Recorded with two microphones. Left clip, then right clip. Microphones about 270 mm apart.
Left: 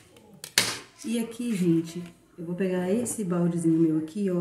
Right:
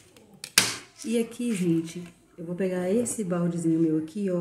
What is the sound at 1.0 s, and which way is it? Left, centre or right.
Speech, centre.